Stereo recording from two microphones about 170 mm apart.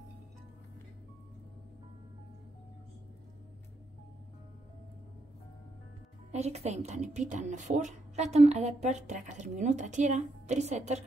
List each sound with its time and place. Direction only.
6.3 s speech: 40° right (ahead or behind)